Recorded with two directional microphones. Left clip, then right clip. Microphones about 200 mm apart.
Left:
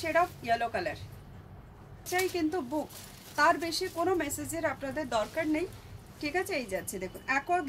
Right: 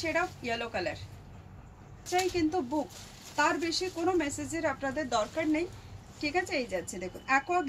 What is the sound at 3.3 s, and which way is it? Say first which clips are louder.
A woman's voice: left 2 dB; 20° left (ahead or behind).